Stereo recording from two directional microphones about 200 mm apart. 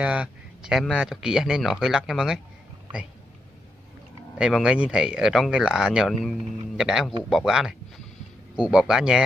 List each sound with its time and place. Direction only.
0.0 s speech: 5° right (ahead or behind)
4.4 s speech: 5° right (ahead or behind)